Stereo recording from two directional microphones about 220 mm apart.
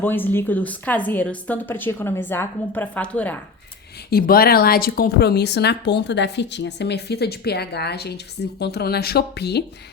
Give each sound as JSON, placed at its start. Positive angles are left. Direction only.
{"t": 0.0, "sound": "a woman's voice", "side_deg": 10}
{"t": 4.1, "sound": "speech", "side_deg": 45}